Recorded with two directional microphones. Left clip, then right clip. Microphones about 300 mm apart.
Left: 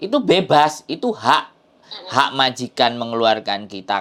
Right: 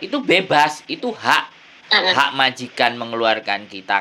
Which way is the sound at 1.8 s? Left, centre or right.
Right.